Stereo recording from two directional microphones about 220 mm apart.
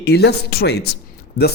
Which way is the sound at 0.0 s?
50° left (ahead or behind).